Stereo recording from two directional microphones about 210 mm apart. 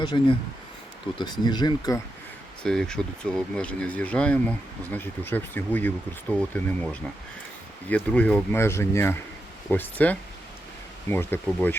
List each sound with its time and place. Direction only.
0.0 s speech: 20° left (ahead or behind)
2.6 s speech: 5° left (ahead or behind)
7.9 s speech: 5° left (ahead or behind)